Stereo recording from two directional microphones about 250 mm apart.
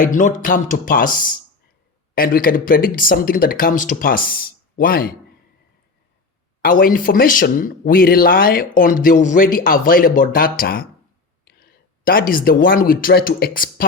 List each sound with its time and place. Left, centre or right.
0.0 s speech: left
6.6 s speech: left